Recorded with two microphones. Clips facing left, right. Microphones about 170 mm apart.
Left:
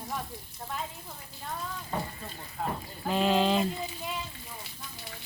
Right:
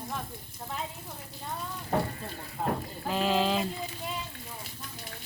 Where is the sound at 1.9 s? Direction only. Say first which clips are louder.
Right 6 dB; 65° right (ahead or behind).